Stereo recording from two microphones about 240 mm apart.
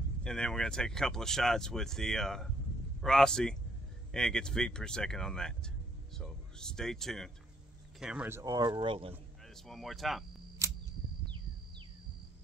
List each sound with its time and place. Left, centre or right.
0.2 s speech: centre; by 9.1 s right
9.7 s speech: centre
10.6 s camera: centre